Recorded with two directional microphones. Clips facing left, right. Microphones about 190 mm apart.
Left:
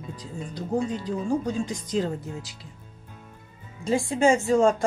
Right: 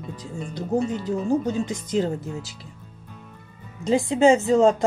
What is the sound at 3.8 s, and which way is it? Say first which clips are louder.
Speech: right 4 dB; 20° right (ahead or behind).